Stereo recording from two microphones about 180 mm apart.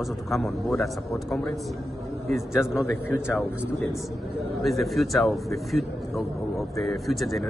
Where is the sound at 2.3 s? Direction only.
Centre (ahead or behind).